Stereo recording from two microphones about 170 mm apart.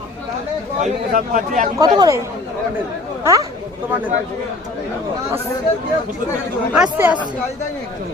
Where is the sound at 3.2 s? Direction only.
20° right (ahead or behind).